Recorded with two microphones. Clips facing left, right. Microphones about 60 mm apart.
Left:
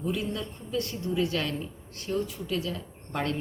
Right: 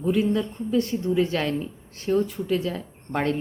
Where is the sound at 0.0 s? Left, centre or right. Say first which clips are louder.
Right 9 dB; right.